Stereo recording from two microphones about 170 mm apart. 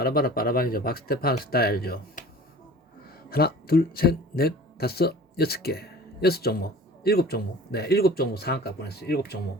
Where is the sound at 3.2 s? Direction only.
65° left (ahead or behind).